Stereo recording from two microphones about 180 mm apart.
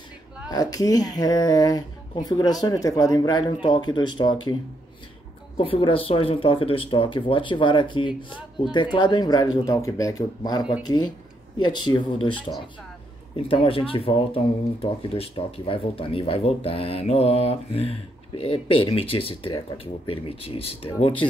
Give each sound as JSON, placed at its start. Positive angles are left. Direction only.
{"t": 0.5, "sound": "speech", "side_deg": 20}
{"t": 5.6, "sound": "speech", "side_deg": 30}
{"t": 13.4, "sound": "speech", "side_deg": 30}